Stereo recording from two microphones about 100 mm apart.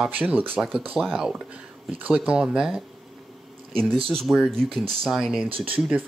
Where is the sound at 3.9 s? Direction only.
65° right (ahead or behind).